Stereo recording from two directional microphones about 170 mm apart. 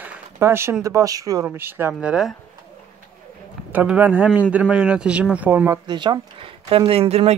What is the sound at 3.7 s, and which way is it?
Speech, 10° right (ahead or behind).